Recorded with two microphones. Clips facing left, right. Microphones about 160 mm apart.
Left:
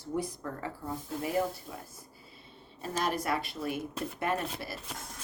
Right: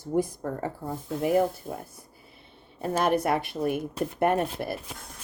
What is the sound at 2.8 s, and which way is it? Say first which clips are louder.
Speech: right 8 dB; 55° right (ahead or behind).